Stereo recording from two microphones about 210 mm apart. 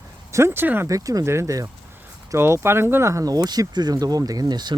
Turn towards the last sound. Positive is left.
turn(degrees=-20)  # may be behind; listen again after turning